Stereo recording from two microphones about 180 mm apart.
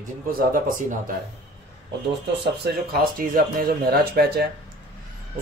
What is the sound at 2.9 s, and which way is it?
Speech, 55° right (ahead or behind).